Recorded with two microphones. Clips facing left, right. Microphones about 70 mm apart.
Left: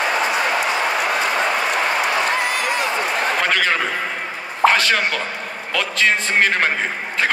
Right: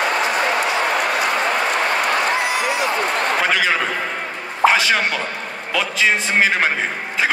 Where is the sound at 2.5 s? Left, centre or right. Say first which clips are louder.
Right 1 dB; left.